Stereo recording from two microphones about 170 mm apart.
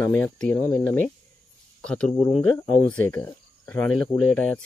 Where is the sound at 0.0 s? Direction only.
15° left (ahead or behind).